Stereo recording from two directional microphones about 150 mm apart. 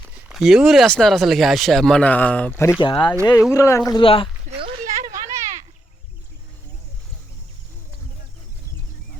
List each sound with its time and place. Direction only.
0.3 s speech: 5° right (ahead or behind); by 2.8 s 15° left (ahead or behind)
2.8 s speech: 35° left (ahead or behind)
3.5 s speech: 20° left (ahead or behind)
3.8 s speech: 30° left (ahead or behind)
4.9 s a sound: 20° right (ahead or behind)